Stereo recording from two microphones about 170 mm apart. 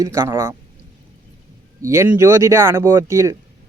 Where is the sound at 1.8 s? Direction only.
15° right (ahead or behind).